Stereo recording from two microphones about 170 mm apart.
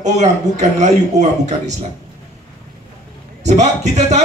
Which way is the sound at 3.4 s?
45° right (ahead or behind).